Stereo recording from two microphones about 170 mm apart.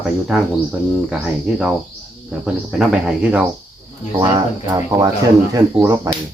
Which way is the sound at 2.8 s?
5° right (ahead or behind).